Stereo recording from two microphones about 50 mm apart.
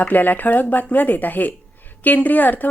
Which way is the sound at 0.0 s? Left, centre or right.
Left.